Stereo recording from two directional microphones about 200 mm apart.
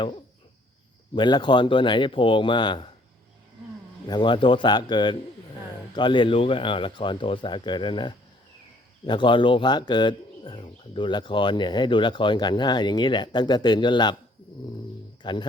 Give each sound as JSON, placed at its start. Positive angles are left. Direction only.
{"t": 1.1, "sound": "speech", "side_deg": 25}
{"t": 4.1, "sound": "speech", "side_deg": 25}
{"t": 15.2, "sound": "speech", "side_deg": 20}